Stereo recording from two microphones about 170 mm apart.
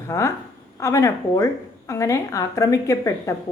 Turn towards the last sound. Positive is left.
turn(degrees=15)  # may be behind; listen again after turning